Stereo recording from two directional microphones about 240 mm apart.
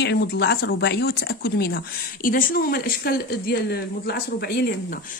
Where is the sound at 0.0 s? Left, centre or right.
Left.